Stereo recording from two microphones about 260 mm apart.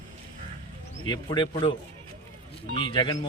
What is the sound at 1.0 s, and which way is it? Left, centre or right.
Speech, centre.